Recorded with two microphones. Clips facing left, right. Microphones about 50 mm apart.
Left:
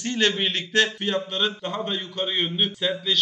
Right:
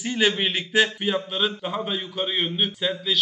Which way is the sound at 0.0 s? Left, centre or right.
Centre.